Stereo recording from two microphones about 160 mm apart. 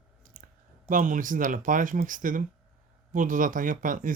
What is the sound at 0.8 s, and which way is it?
Speech, 55° right (ahead or behind).